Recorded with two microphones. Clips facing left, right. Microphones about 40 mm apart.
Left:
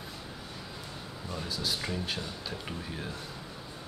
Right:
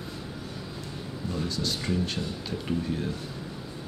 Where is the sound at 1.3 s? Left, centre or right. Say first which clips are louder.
Right 3 dB; centre.